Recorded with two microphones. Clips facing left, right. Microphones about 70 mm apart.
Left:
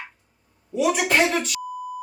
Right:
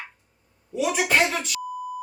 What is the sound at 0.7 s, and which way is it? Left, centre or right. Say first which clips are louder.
Speech: left 2 dB; centre.